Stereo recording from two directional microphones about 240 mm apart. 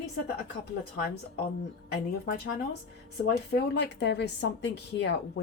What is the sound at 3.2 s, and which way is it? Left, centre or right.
A woman's voice, left.